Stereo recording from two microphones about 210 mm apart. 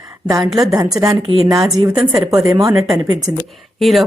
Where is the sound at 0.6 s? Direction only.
15° right (ahead or behind).